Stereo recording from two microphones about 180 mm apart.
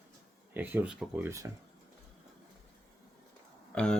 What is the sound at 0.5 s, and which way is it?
Speech, 10° right (ahead or behind).